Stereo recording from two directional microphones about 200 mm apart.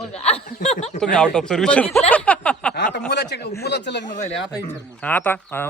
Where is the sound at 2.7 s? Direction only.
55° left (ahead or behind).